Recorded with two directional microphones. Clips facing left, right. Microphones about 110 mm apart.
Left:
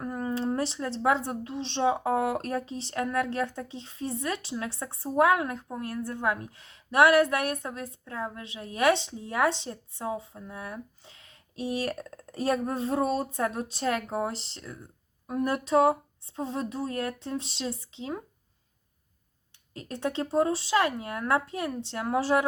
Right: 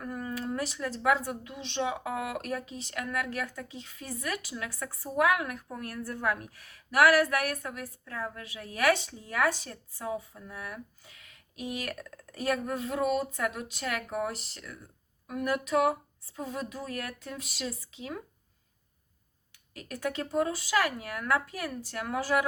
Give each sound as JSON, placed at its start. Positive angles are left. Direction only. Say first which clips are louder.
{"t": 0.0, "sound": "speech", "louder": "left 5 dB", "side_deg": 25}
{"t": 19.7, "sound": "speech", "louder": "left 3 dB", "side_deg": 25}